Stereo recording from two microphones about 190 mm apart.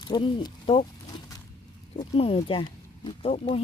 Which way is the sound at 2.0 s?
30° left (ahead or behind).